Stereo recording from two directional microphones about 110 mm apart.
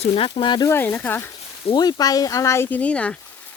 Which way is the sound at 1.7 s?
40° left (ahead or behind).